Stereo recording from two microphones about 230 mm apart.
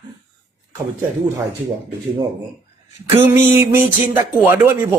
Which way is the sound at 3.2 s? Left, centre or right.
Centre.